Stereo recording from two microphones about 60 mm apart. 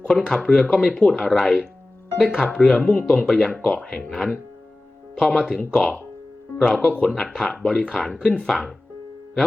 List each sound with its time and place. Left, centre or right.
0.1 s speech: centre
3.6 s speech: centre
3.9 s speech: centre